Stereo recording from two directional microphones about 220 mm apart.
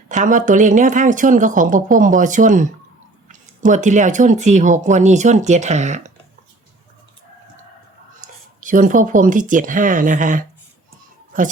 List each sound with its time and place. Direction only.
0.1 s speech: 35° right (ahead or behind)
8.2 s a sound: 35° right (ahead or behind)
8.6 s speech: 35° right (ahead or behind)